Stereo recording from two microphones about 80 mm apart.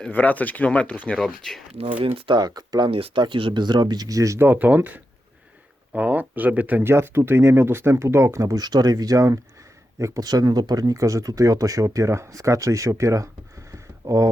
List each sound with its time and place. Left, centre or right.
0.1 s speech: left
1.1 s speech: centre
1.9 s speech: right
4.4 s speech: right
6.9 s speech: right